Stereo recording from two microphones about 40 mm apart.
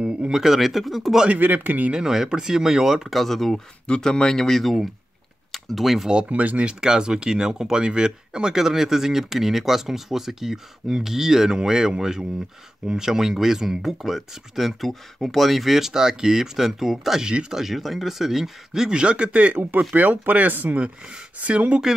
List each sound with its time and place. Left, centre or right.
0.3 s speech: centre
1.4 s speech: right
2.0 s speech: centre
3.8 s speech: left; by 6.0 s centre
6.2 s speech: right
6.6 s speech: right
8.5 s speech: centre
17.2 s speech: right
17.5 s speech: centre; by 20.8 s right
21.4 s speech: right